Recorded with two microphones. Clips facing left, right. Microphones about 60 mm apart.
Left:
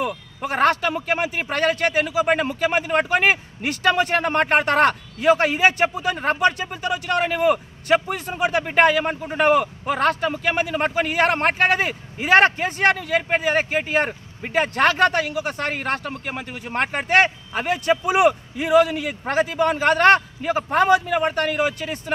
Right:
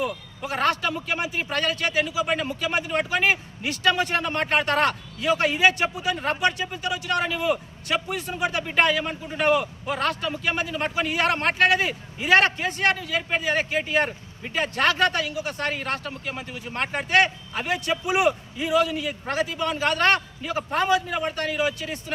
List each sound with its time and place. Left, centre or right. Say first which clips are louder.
0.0 s a sound: left 3 dB; left
0.6 s a man's voice: left 5 dB; left
18.2 s a man's voice: left 5 dB; left